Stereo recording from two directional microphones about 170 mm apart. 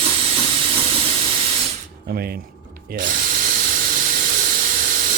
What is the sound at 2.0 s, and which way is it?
Speech, 65° right (ahead or behind).